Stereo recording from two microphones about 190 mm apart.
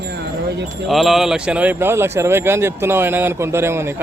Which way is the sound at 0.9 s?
Centre (ahead or behind).